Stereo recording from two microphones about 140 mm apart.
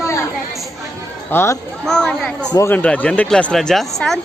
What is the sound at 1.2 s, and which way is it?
Speech, 20° left (ahead or behind).